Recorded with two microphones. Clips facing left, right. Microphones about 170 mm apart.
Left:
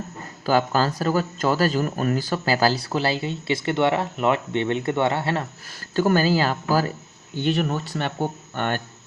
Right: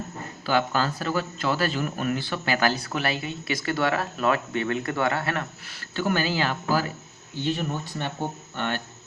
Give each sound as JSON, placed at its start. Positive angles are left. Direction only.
{"t": 0.4, "sound": "speech", "side_deg": 40}
{"t": 5.6, "sound": "speech", "side_deg": 40}
{"t": 7.4, "sound": "speech", "side_deg": 75}
{"t": 8.5, "sound": "speech", "side_deg": 50}